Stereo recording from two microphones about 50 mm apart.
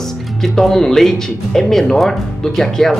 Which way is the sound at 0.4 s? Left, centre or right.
Centre.